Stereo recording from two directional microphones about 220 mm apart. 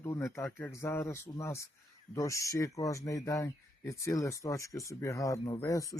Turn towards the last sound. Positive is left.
turn(degrees=15)  # may be behind; listen again after turning